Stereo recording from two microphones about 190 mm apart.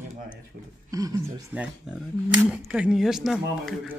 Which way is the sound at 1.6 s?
5° right (ahead or behind).